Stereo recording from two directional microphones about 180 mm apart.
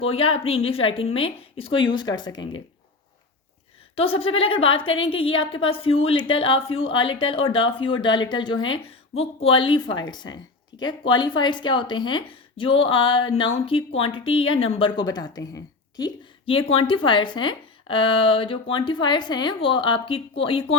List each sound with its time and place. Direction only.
0.0 s a woman's voice: 30° left (ahead or behind)
3.9 s a woman's voice: 30° left (ahead or behind)